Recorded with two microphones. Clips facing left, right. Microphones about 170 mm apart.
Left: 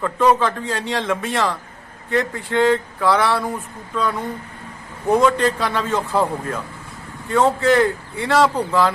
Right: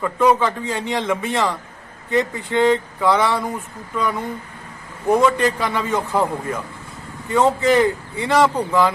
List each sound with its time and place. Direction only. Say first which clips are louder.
0.0 s speech: even; 10° right (ahead or behind)
5.0 s speech: even; 10° right (ahead or behind)